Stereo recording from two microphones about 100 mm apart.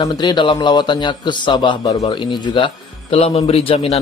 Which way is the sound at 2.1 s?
50° left (ahead or behind).